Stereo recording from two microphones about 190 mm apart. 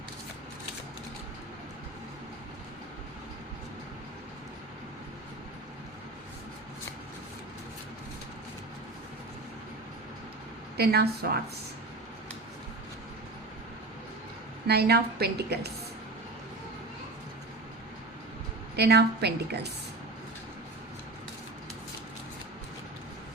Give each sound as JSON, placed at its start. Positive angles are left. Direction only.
{"t": 10.8, "sound": "a woman's voice", "side_deg": -55}
{"t": 14.7, "sound": "a woman's voice", "side_deg": -55}
{"t": 18.8, "sound": "a woman's voice", "side_deg": -60}